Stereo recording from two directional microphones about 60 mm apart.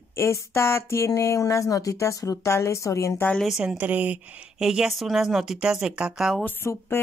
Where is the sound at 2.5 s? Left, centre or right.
Left.